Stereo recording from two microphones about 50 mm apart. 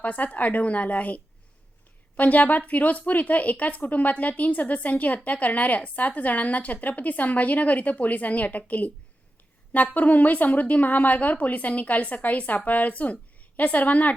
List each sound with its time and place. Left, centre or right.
0.0 s speech: left